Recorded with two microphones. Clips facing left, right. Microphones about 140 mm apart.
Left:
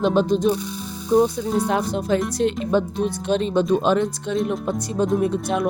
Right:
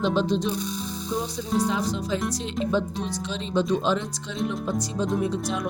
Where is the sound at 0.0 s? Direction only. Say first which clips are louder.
Left 5 dB; 55° left (ahead or behind).